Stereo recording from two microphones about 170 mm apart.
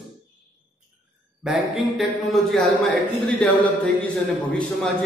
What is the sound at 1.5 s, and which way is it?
A man's voice, centre (ahead or behind).